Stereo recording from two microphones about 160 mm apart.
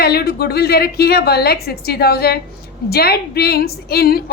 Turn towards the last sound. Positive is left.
turn(degrees=75)  # may be behind; listen again after turning